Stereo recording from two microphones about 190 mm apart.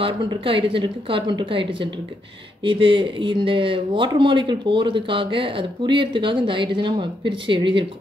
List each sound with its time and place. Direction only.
0.0 s speech: 25° right (ahead or behind)